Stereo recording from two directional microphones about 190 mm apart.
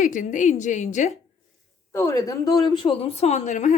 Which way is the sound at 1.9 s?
15° left (ahead or behind).